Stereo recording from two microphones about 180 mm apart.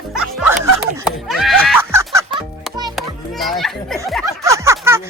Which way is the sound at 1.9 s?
15° right (ahead or behind).